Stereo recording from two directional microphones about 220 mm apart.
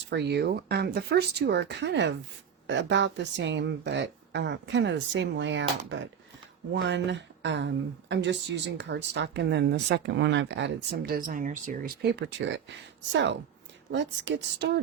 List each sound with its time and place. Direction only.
0.1 s a woman's voice: 50° right (ahead or behind)
13.9 s a woman's voice: 55° right (ahead or behind)